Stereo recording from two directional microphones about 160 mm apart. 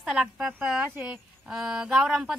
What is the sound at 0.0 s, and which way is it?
Speech, centre (ahead or behind).